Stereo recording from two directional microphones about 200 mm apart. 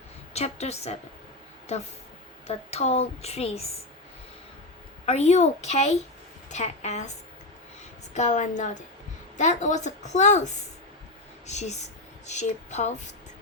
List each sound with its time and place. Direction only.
0.3 s a woman's voice: 30° left (ahead or behind)
2.5 s a woman's voice: 30° left (ahead or behind)
5.0 s a woman's voice: 30° left (ahead or behind)
8.1 s a woman's voice: 35° left (ahead or behind)